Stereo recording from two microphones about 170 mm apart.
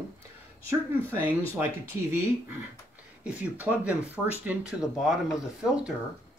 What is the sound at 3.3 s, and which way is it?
Speech, 10° right (ahead or behind).